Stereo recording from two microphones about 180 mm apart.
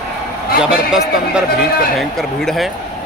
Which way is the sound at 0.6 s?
5° right (ahead or behind).